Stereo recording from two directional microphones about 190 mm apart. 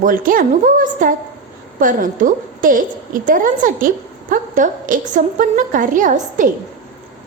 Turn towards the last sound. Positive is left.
turn(degrees=-45)  # may be behind; listen again after turning